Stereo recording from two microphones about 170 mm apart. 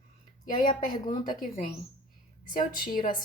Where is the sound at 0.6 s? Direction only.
50° left (ahead or behind).